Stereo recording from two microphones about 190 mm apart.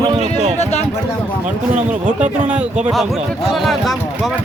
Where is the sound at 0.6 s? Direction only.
35° left (ahead or behind).